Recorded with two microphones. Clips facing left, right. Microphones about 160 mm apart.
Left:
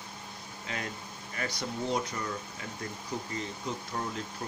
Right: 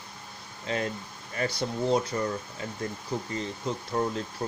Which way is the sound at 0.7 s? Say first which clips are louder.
Right 8 dB; 30° right (ahead or behind).